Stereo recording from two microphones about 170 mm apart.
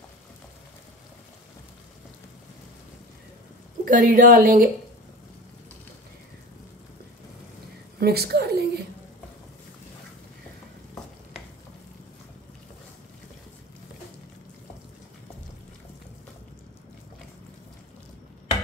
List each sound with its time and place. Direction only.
3.8 s a woman's voice: 50° right (ahead or behind)
8.0 s a woman's voice: 70° right (ahead or behind)